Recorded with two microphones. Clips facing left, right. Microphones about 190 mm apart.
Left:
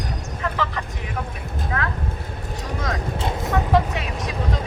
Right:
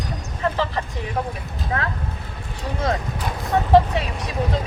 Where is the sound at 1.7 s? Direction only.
30° right (ahead or behind).